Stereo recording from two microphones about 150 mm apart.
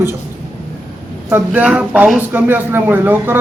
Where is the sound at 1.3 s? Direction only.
10° right (ahead or behind).